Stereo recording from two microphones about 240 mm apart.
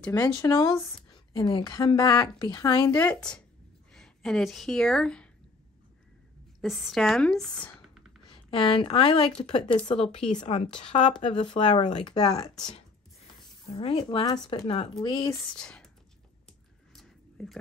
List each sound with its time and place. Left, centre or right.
0.0 s a woman's voice: centre
6.6 s speech: centre
8.3 s a woman's voice: left
15.5 s speech: centre
16.9 s a sound: centre